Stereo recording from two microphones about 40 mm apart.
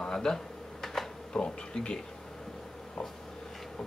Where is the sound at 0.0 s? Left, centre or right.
Centre.